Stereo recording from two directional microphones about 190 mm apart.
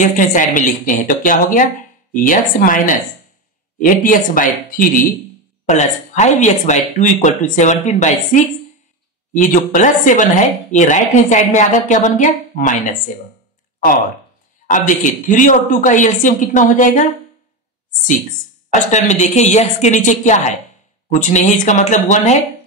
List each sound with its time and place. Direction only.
0.0 s speech: 40° left (ahead or behind)
9.3 s speech: 40° left (ahead or behind)
15.2 s speech: 45° left (ahead or behind)
18.7 s speech: 40° left (ahead or behind)